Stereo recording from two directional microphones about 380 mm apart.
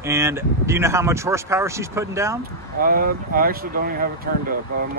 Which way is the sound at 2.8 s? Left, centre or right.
Right.